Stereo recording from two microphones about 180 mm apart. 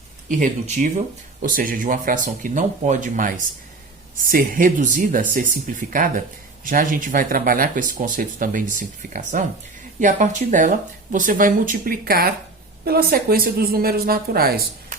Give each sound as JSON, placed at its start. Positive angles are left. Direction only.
{"t": 0.3, "sound": "speech", "side_deg": -45}